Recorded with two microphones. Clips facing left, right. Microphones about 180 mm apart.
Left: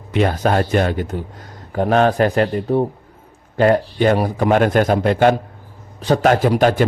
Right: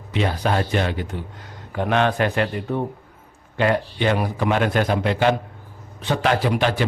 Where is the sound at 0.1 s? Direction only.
50° left (ahead or behind).